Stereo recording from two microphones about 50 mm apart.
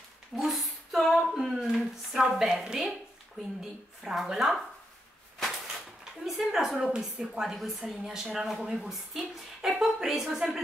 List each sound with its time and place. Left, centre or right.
0.4 s speech: centre
6.2 s speech: centre